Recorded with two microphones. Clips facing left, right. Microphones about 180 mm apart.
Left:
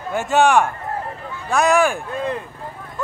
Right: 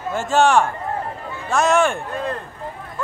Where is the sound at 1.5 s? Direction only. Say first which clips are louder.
Left 1 dB; centre (ahead or behind).